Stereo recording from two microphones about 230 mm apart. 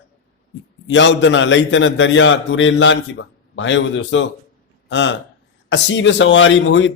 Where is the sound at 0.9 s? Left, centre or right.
Left.